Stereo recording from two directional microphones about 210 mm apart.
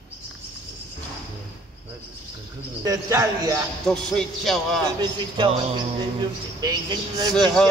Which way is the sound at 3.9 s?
Centre (ahead or behind).